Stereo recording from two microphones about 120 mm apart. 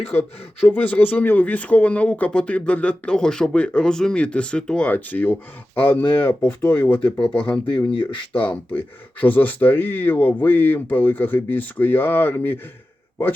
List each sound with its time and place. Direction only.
0.1 s speech: 15° left (ahead or behind)
7.9 s speech: 40° left (ahead or behind)
9.2 s speech: 15° left (ahead or behind)